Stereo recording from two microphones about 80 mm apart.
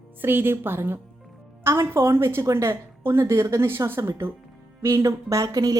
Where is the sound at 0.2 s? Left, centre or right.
Right.